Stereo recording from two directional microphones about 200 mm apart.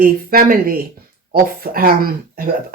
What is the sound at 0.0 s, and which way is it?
Speech, 45° right (ahead or behind).